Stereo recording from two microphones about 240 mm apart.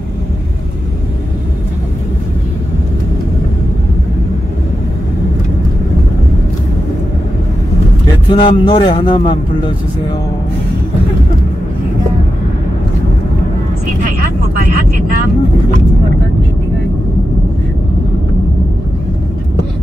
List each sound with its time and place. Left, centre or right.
8.3 s speech: centre